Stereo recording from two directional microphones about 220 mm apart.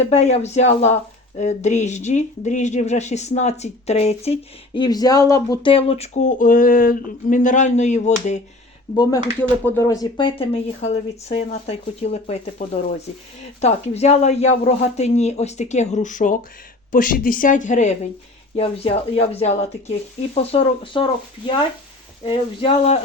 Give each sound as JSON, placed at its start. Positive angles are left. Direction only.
{"t": 0.1, "sound": "speech", "side_deg": 30}
{"t": 9.0, "sound": "speech", "side_deg": 15}
{"t": 22.6, "sound": "speech", "side_deg": 25}